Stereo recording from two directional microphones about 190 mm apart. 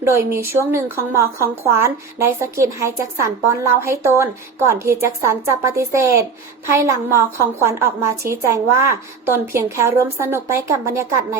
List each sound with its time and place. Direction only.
0.0 s a woman's voice: 15° right (ahead or behind)